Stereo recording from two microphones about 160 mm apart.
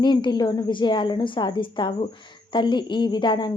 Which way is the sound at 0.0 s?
30° left (ahead or behind).